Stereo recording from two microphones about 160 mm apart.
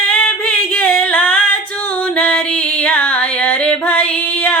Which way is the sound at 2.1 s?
10° left (ahead or behind).